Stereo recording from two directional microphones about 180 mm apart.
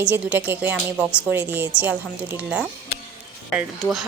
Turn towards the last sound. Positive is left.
turn(degrees=0)  # may be behind; listen again after turning